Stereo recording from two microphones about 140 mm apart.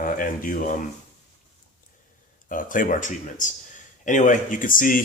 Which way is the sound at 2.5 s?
70° left (ahead or behind).